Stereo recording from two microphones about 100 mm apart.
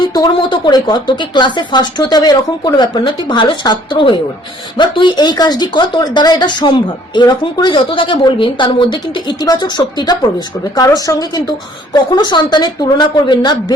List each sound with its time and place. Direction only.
0.0 s speech: 45° left (ahead or behind)
9.4 s speech: 40° left (ahead or behind)